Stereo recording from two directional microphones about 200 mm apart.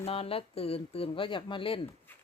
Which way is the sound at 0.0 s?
30° left (ahead or behind).